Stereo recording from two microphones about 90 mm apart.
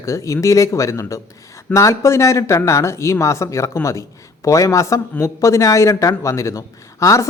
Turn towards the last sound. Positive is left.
turn(degrees=35)  # may be behind; listen again after turning